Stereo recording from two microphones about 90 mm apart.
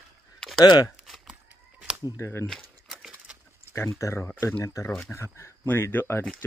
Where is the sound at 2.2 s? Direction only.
30° left (ahead or behind).